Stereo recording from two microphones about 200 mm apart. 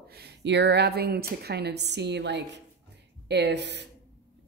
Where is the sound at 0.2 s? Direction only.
60° right (ahead or behind).